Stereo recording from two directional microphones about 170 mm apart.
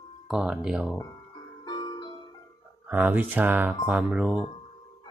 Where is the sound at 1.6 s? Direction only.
25° left (ahead or behind).